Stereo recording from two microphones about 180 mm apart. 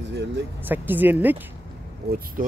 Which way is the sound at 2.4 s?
50° right (ahead or behind).